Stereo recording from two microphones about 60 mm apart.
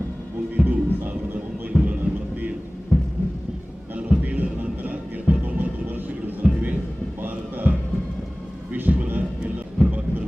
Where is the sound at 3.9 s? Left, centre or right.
Right.